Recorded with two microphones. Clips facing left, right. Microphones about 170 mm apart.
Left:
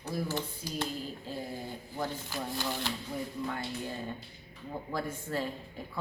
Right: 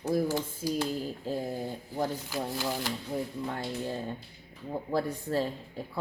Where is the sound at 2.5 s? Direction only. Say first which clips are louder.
Right 1 dB; 5° right (ahead or behind).